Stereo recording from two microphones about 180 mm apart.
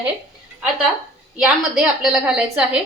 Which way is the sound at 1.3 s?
5° right (ahead or behind).